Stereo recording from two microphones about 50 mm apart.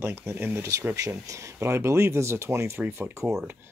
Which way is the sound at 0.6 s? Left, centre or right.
Right.